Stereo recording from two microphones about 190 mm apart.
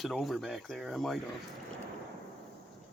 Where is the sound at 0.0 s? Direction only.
Centre (ahead or behind).